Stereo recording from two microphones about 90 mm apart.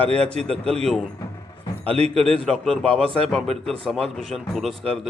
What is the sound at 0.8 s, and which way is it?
A man's voice, 5° left (ahead or behind).